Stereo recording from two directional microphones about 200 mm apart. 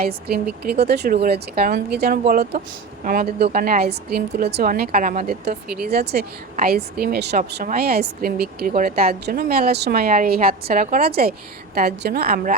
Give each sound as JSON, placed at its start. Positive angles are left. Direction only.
{"t": 0.0, "sound": "speech", "side_deg": -50}
{"t": 2.2, "sound": "speech", "side_deg": -40}